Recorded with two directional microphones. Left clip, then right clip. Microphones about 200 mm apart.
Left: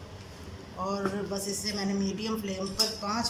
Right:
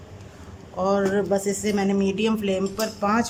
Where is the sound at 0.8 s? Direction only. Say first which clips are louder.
Right 10 dB; 60° right (ahead or behind).